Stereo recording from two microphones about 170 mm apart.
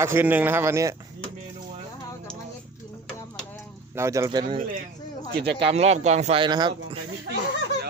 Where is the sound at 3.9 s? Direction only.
15° right (ahead or behind).